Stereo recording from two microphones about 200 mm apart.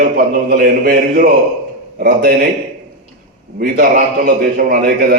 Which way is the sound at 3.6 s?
50° right (ahead or behind).